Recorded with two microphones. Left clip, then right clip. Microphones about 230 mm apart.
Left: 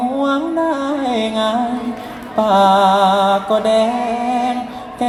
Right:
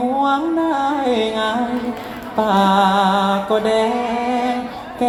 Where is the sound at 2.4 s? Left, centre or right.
Left.